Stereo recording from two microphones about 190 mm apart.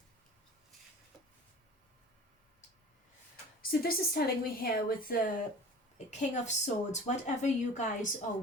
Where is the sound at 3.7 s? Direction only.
50° left (ahead or behind).